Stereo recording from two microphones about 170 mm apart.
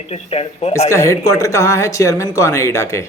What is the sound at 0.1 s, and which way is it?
Speech, 40° left (ahead or behind).